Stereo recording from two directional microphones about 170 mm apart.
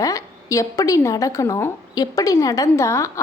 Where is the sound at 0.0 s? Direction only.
20° left (ahead or behind).